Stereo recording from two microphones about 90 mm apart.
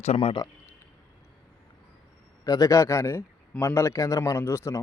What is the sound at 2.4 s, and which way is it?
A man's voice, 40° left (ahead or behind).